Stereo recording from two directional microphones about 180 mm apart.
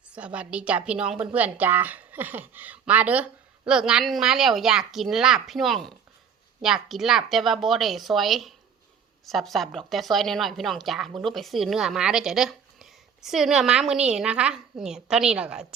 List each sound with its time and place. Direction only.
0.1 s a woman's voice: 5° right (ahead or behind)